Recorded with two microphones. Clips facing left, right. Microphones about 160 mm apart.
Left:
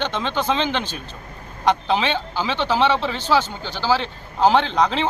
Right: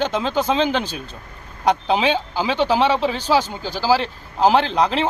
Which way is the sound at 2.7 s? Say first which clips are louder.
Even; 10° right (ahead or behind).